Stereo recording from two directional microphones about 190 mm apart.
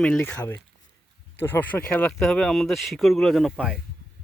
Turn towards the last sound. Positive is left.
turn(degrees=0)  # may be behind; listen again after turning